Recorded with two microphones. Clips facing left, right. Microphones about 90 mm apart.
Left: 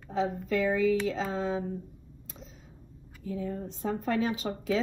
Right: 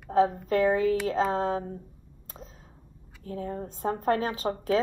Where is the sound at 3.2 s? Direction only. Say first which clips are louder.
Even; 45° right (ahead or behind).